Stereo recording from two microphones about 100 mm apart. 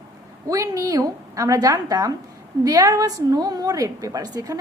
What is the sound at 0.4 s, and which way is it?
A woman's voice, 35° right (ahead or behind).